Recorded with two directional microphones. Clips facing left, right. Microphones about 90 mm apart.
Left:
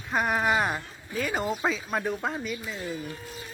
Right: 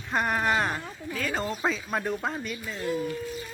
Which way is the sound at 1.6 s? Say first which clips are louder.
Even; centre (ahead or behind).